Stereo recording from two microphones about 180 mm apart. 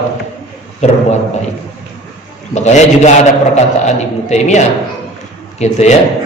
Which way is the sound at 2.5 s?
40° left (ahead or behind).